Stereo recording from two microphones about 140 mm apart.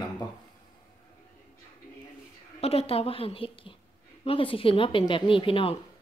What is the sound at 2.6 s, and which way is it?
A woman's voice, 45° left (ahead or behind).